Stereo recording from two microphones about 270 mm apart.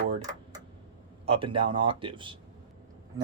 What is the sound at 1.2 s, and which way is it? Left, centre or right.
Speech, right.